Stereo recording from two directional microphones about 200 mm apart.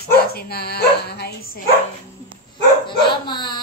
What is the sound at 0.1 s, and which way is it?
Speech, 50° left (ahead or behind).